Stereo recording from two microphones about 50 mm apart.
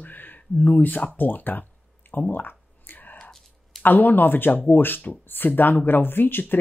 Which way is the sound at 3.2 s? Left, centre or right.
Centre.